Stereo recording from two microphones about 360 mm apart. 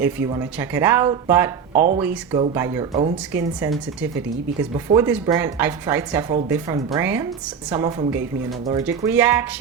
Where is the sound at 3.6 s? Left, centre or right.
Centre.